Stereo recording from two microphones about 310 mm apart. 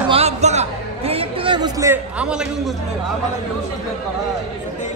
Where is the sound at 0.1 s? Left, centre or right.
Right; by 2.7 s centre.